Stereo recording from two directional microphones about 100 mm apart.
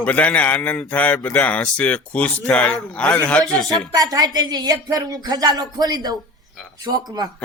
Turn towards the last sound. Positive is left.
turn(degrees=-45)  # may be behind; listen again after turning